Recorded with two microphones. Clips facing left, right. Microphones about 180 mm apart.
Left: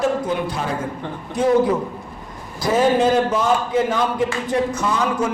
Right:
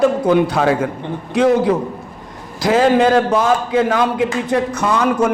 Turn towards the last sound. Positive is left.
turn(degrees=-65)  # may be behind; listen again after turning